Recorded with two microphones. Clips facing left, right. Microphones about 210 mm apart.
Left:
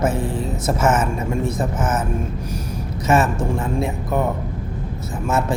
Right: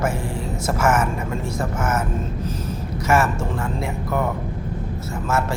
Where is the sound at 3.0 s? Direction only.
20° left (ahead or behind).